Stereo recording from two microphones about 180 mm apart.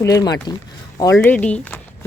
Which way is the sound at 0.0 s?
20° left (ahead or behind).